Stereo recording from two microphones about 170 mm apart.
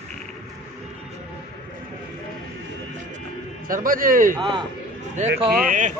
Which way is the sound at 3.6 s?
55° right (ahead or behind).